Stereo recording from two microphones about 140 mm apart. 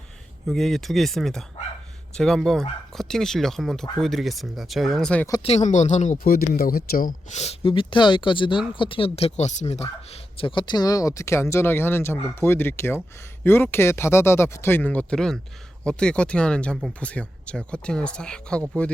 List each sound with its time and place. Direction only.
0.4 s speech: centre (ahead or behind)
5.4 s speech: 45° left (ahead or behind)
5.6 s speech: 60° left (ahead or behind); by 7.3 s 85° left
7.3 s speech: 50° left (ahead or behind)
7.7 s speech: 35° left (ahead or behind)
9.4 s speech: 55° left (ahead or behind); by 18.6 s 5° left (ahead or behind)